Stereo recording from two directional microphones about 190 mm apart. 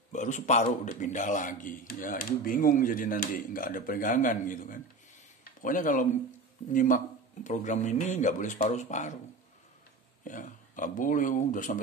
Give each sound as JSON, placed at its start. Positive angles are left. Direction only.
{"t": 0.1, "sound": "a man's voice", "side_deg": 40}
{"t": 10.2, "sound": "speech", "side_deg": 45}